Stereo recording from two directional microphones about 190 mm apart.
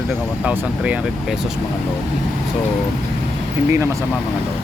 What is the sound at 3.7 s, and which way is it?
Speech, 15° right (ahead or behind).